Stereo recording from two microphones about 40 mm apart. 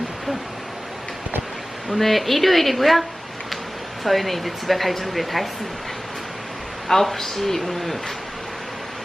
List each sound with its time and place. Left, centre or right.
1.9 s speech: centre
4.0 s speech: centre
6.8 s speech: centre